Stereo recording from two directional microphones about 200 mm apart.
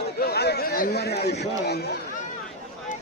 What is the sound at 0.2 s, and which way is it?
A man's voice, 50° left (ahead or behind).